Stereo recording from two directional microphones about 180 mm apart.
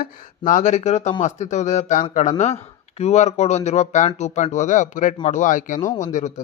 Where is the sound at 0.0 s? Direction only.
45° left (ahead or behind).